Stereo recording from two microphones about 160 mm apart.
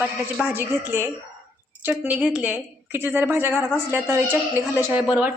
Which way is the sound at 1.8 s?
10° right (ahead or behind).